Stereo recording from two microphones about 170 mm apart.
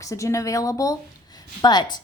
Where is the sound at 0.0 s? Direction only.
20° left (ahead or behind).